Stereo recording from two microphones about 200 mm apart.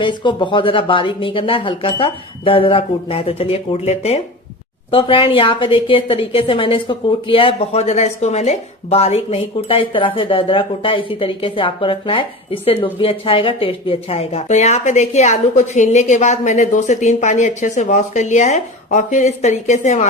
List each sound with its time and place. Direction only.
0.0 s a woman's voice: 25° left (ahead or behind)